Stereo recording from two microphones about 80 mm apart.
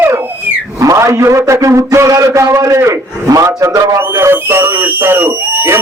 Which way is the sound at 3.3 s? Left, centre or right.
Right.